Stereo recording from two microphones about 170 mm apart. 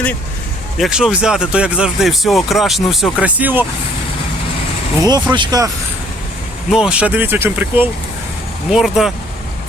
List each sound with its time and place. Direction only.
0.8 s speech: 5° right (ahead or behind)
5.0 s speech: 25° right (ahead or behind)
6.7 s speech: 5° right (ahead or behind)